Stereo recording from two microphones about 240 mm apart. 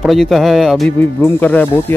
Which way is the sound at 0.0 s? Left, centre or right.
Centre.